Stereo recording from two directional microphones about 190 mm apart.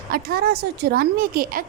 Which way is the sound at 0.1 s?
50° right (ahead or behind).